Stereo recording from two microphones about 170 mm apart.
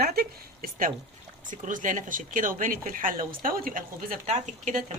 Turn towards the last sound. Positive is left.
turn(degrees=-45)  # may be behind; listen again after turning